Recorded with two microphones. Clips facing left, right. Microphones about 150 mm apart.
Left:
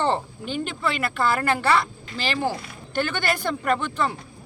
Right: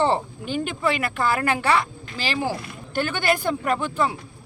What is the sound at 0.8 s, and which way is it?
Speech, 15° right (ahead or behind).